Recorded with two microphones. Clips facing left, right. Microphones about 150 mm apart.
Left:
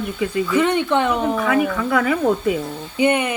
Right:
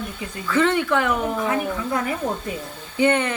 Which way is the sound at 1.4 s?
75° left (ahead or behind).